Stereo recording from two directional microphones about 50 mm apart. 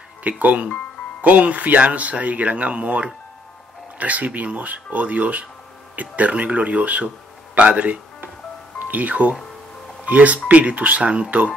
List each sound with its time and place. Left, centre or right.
0.2 s speech: right